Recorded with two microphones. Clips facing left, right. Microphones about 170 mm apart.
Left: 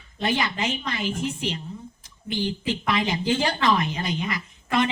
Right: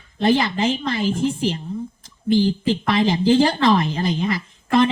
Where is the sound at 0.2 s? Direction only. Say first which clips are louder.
Right 8 dB; 30° right (ahead or behind).